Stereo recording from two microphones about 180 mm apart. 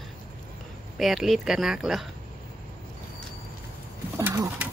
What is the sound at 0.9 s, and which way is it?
Speech, centre (ahead or behind).